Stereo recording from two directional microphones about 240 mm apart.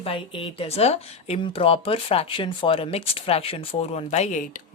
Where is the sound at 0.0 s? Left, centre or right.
Left.